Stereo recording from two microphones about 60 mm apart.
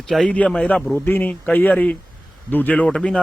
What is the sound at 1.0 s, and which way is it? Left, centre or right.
Speech, left.